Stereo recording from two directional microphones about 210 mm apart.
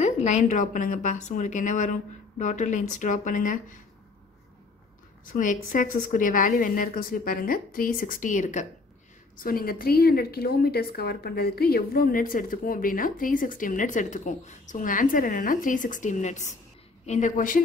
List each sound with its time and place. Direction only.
0.0 s a woman's voice: 35° left (ahead or behind)
5.2 s a woman's voice: 40° left (ahead or behind)